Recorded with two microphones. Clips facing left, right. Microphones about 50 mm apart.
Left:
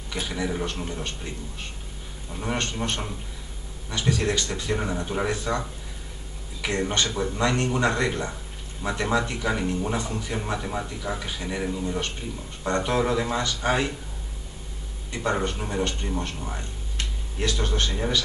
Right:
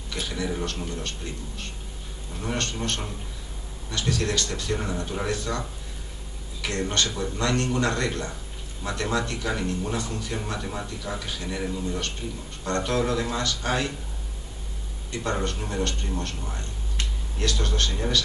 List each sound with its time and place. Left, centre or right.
0.1 s speech: centre
15.0 s speech: centre